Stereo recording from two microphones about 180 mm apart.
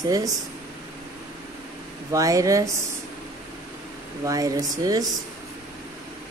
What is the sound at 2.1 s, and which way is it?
Speech, 20° right (ahead or behind).